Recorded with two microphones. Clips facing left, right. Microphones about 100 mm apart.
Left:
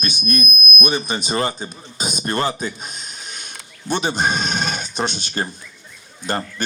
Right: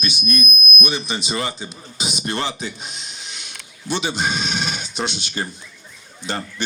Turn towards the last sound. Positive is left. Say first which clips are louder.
# left 3 dB
turn(degrees=45)  # may be behind; listen again after turning